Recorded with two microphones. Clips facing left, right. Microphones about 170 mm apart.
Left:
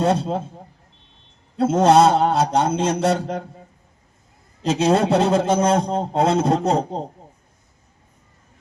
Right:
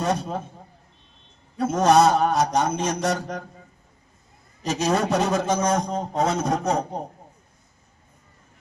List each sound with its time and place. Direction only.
0.0 s mantra: 25° left (ahead or behind)
1.5 s mantra: 25° left (ahead or behind)
4.7 s mantra: 25° left (ahead or behind)
6.1 s a sound: 65° left (ahead or behind)
6.4 s mantra: 30° left (ahead or behind)